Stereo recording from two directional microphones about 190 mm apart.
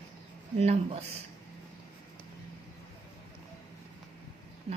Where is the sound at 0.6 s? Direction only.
35° right (ahead or behind).